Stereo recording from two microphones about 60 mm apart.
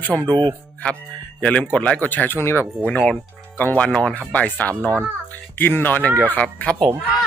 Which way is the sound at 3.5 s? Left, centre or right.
Left.